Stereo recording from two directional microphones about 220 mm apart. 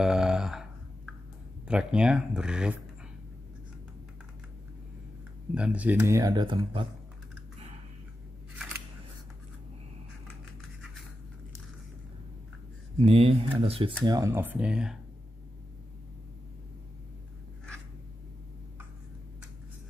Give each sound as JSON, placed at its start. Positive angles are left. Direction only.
{"t": 0.0, "sound": "a sound", "side_deg": -5}
{"t": 1.7, "sound": "speech", "side_deg": -5}
{"t": 5.5, "sound": "speech", "side_deg": -5}
{"t": 13.0, "sound": "speech", "side_deg": -25}